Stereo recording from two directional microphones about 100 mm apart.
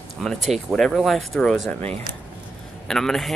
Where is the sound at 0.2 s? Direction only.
Centre (ahead or behind).